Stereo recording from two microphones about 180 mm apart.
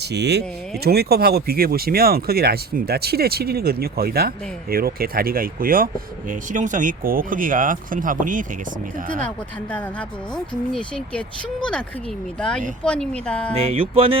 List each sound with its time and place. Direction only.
0.0 s speech: 65° right (ahead or behind); by 8.4 s 45° right (ahead or behind)
10.7 s speech: 5° left (ahead or behind)
12.4 s speech: 5° left (ahead or behind)
13.5 s speech: 35° right (ahead or behind)